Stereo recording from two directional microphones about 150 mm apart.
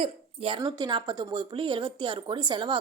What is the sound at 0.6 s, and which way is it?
A woman's voice, 25° right (ahead or behind).